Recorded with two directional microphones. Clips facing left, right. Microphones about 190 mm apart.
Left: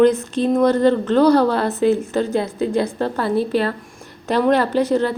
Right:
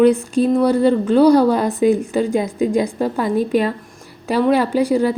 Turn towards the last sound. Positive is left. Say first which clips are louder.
# right 2 dB
turn(degrees=-10)  # may be behind; listen again after turning